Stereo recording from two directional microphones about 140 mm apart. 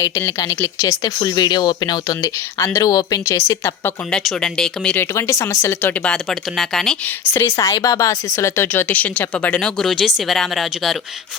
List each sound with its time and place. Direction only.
0.0 s speech: 20° left (ahead or behind)
4.1 s speech: 5° left (ahead or behind)
5.1 s speech: 20° left (ahead or behind)
6.6 s speech: 5° left (ahead or behind)
7.3 s speech: 20° left (ahead or behind); by 10.9 s centre (ahead or behind)